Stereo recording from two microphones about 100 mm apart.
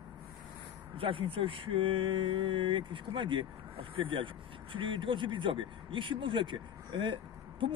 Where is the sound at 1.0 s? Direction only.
60° right (ahead or behind).